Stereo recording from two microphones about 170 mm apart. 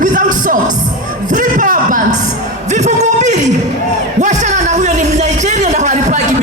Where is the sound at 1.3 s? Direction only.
50° right (ahead or behind).